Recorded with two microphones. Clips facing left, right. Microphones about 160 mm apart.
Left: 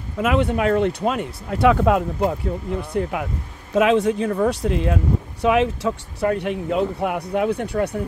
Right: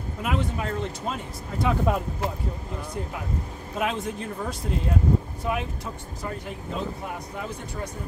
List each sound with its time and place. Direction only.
0.2 s speech: 80° left
2.9 s speech: 75° left (ahead or behind)
3.7 s speech: 90° left; by 7.9 s 65° left (ahead or behind)